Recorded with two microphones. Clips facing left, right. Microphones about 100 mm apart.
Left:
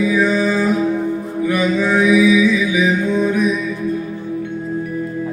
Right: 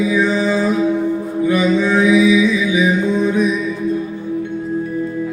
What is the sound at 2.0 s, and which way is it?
Mantra, 20° right (ahead or behind).